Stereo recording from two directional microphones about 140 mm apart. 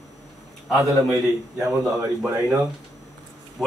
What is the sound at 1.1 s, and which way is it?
Speech, 20° right (ahead or behind).